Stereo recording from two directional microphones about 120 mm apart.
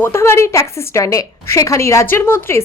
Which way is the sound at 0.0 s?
20° left (ahead or behind).